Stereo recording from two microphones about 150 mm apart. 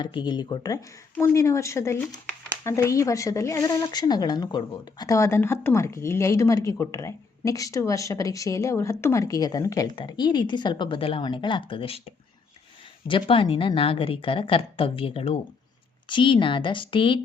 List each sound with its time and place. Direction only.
0.0 s speech: 30° left (ahead or behind)
13.1 s speech: 35° left (ahead or behind)